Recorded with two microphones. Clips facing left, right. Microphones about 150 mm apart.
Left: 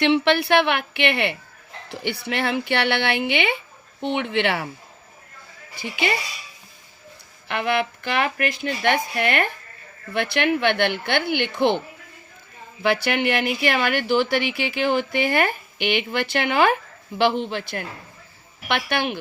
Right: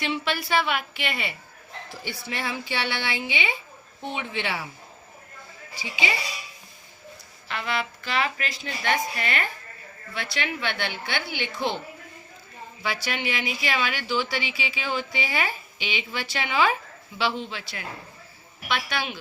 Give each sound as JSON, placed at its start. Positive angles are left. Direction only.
{"t": 0.0, "sound": "a woman's voice", "side_deg": 70}
{"t": 5.7, "sound": "speech", "side_deg": 55}
{"t": 7.4, "sound": "speech", "side_deg": 60}
{"t": 12.8, "sound": "speech", "side_deg": 60}